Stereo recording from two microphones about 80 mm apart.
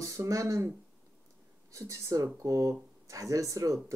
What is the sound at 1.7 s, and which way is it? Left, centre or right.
A woman's voice, right.